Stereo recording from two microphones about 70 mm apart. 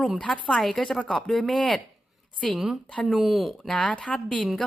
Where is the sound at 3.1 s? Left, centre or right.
Centre.